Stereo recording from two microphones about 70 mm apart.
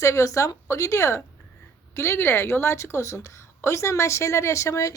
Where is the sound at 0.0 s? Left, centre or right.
Left.